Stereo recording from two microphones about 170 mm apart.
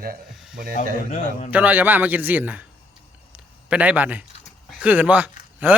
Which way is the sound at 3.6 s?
5° right (ahead or behind).